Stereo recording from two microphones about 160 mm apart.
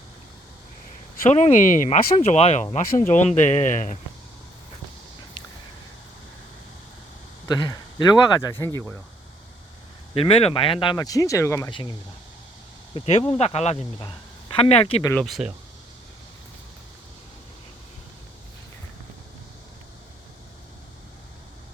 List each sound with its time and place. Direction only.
1.4 s speech: 55° left (ahead or behind)
7.4 s speech: 25° left (ahead or behind)
10.2 s speech: 40° left (ahead or behind); by 11.7 s 20° left (ahead or behind)
11.7 s speech: 30° left (ahead or behind)
14.0 s speech: 30° left (ahead or behind)
15.1 s speech: centre (ahead or behind)